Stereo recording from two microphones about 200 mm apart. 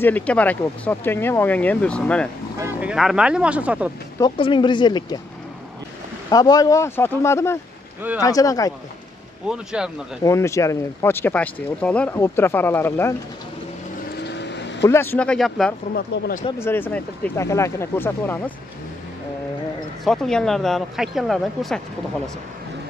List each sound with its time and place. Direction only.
0.0 s speech: 5° left (ahead or behind)
2.6 s speech: 5° right (ahead or behind)
4.2 s speech: 25° left (ahead or behind)
6.3 s speech: 20° left (ahead or behind)
9.5 s speech: 5° right (ahead or behind)
10.2 s speech: 15° left (ahead or behind)
14.2 s vehicle: 60° left (ahead or behind)
14.8 s speech: 15° left (ahead or behind)
16.5 s speech: 10° left (ahead or behind)
20.1 s speech: 5° left (ahead or behind)